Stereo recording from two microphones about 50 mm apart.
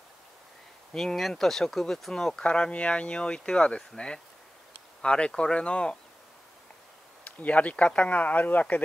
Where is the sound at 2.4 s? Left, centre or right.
Left.